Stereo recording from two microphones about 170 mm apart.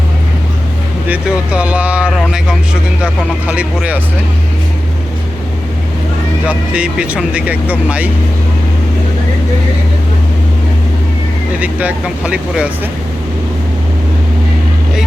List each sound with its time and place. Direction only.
1.0 s speech: 10° right (ahead or behind)
6.4 s speech: 5° right (ahead or behind)
11.6 s speech: 10° right (ahead or behind)